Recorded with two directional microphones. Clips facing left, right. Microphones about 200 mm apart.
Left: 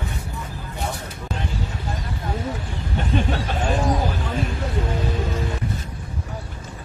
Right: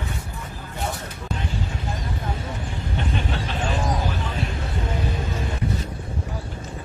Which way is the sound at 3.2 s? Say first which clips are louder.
Left 4 dB; 45° left (ahead or behind).